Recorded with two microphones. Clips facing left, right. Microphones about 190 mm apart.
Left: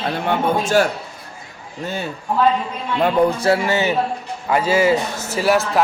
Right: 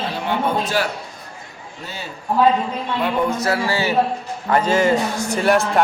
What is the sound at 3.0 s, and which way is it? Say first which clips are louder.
Speech: left 5 dB; 30° left (ahead or behind).